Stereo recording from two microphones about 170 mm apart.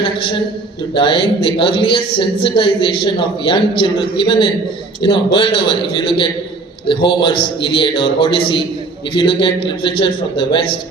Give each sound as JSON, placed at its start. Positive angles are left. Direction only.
{"t": 0.0, "sound": "a woman's voice", "side_deg": 30}